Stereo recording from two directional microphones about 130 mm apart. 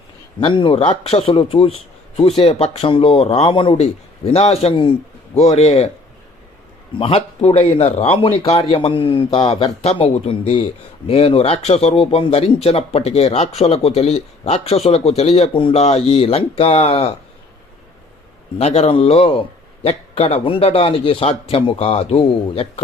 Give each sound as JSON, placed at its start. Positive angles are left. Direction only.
{"t": 0.3, "sound": "a man's voice", "side_deg": 40}
{"t": 5.4, "sound": "a man's voice", "side_deg": 55}
{"t": 7.0, "sound": "a man's voice", "side_deg": 50}
{"t": 9.8, "sound": "a man's voice", "side_deg": 50}
{"t": 18.6, "sound": "a man's voice", "side_deg": 55}